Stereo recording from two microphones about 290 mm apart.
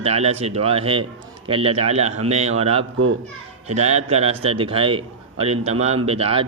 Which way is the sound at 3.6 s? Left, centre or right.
Right.